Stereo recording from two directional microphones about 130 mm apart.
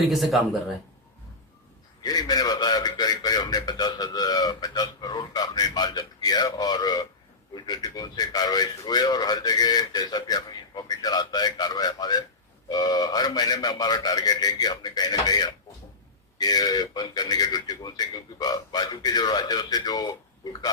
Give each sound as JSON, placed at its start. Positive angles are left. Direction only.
{"t": 0.1, "sound": "speech", "side_deg": 0}
{"t": 2.0, "sound": "a sound", "side_deg": 30}
{"t": 7.5, "sound": "a man's voice", "side_deg": 30}